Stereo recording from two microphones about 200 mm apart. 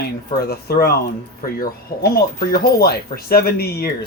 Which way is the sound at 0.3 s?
50° left (ahead or behind).